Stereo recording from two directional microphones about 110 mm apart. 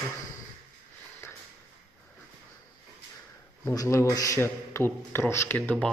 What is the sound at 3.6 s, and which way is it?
A man's voice, 30° left (ahead or behind).